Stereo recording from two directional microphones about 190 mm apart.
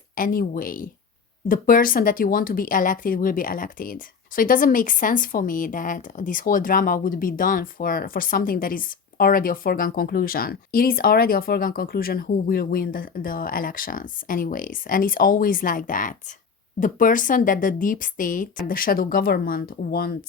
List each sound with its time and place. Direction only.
0.2 s speech: 45° left (ahead or behind)